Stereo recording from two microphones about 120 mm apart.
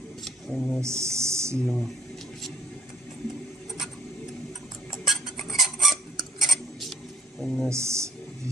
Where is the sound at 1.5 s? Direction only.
5° left (ahead or behind).